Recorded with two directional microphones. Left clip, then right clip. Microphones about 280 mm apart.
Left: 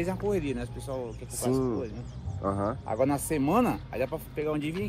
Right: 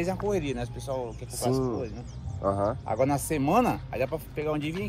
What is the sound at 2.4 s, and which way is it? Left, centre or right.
Speech, centre.